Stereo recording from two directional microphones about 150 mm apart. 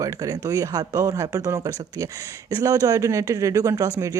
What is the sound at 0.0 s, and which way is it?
Speech, 25° right (ahead or behind).